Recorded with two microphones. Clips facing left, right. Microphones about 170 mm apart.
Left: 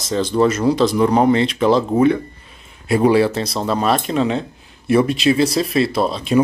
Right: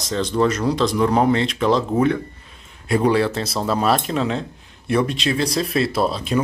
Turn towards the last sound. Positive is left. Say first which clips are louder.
# left 2 dB
turn(degrees=0)  # may be behind; listen again after turning